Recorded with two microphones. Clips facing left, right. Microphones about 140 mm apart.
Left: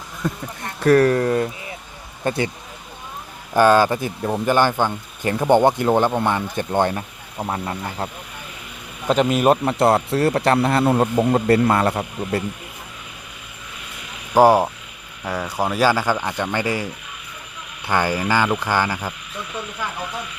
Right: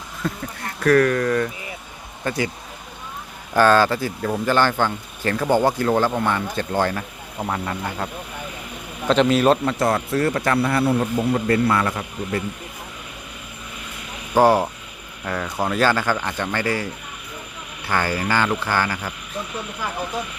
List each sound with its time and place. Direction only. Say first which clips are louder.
0.2 s speech: left 1 dB; 15° left (ahead or behind)
0.6 s speech: left 2 dB; 25° left (ahead or behind)
3.5 s speech: left 1 dB; 15° left (ahead or behind)
9.0 s speech: even; 10° left (ahead or behind)
9.7 s speech: left 3 dB; 30° left (ahead or behind)
10.8 s a man's voice: left 3 dB; 40° left (ahead or behind)
14.3 s speech: left 2 dB; 15° left (ahead or behind)